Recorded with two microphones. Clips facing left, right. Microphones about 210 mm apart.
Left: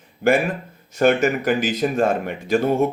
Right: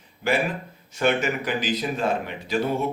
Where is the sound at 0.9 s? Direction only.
45° left (ahead or behind).